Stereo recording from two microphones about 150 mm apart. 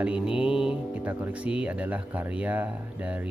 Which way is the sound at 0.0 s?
5° right (ahead or behind).